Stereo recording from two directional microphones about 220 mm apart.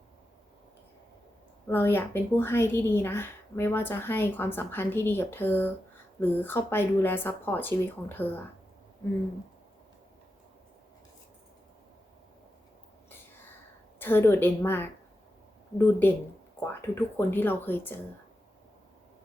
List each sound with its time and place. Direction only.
1.6 s a woman's voice: 10° left (ahead or behind)
14.0 s a woman's voice: 10° left (ahead or behind)